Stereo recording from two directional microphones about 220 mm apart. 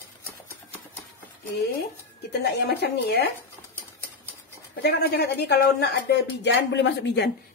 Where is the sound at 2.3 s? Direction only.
50° left (ahead or behind).